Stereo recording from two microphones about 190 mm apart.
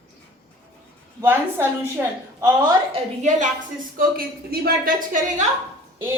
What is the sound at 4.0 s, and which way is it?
A woman's voice, 50° right (ahead or behind).